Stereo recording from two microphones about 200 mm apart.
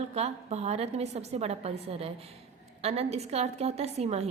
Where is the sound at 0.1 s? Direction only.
30° right (ahead or behind).